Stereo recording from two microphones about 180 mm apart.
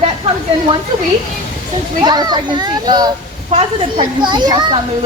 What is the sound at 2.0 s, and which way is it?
A child's voice, 25° right (ahead or behind).